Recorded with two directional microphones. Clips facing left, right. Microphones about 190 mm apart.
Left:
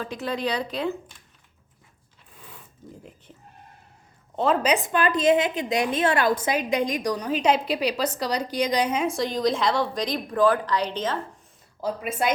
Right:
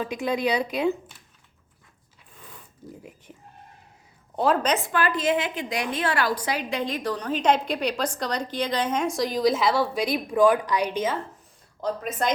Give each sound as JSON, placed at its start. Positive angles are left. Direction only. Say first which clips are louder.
{"t": 0.0, "sound": "a woman's voice", "louder": "right 3 dB", "side_deg": -15}
{"t": 4.4, "sound": "a woman's voice", "louder": "even", "side_deg": 0}
{"t": 4.7, "sound": "a woman's voice", "louder": "left 2 dB", "side_deg": 20}
{"t": 11.8, "sound": "a woman's voice", "louder": "left 1 dB", "side_deg": 10}